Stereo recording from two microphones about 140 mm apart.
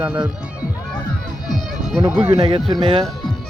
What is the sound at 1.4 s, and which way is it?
Music, centre (ahead or behind).